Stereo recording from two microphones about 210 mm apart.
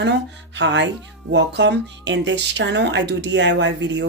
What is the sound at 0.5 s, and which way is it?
Speech, 55° right (ahead or behind).